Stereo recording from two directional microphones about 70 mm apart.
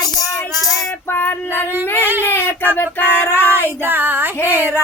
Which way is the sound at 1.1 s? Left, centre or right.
Left.